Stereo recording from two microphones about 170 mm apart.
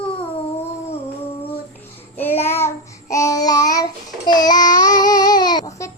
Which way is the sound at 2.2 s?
15° left (ahead or behind).